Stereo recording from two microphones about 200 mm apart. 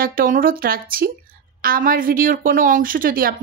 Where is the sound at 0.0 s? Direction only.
45° right (ahead or behind).